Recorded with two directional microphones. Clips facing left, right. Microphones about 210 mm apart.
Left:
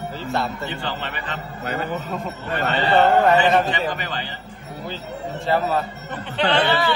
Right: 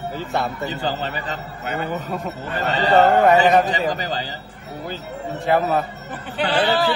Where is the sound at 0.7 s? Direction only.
40° right (ahead or behind).